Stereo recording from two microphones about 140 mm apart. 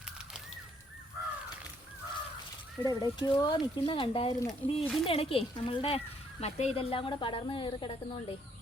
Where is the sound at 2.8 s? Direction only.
30° left (ahead or behind).